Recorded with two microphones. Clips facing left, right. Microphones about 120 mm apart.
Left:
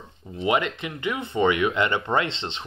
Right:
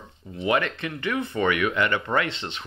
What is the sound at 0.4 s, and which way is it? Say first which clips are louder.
Speech: left 1 dB; 20° left (ahead or behind).